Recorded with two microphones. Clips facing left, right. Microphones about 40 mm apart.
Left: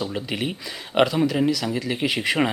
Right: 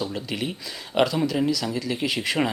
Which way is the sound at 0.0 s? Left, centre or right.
Centre.